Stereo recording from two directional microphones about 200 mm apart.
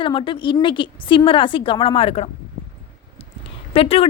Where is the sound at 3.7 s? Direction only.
30° left (ahead or behind).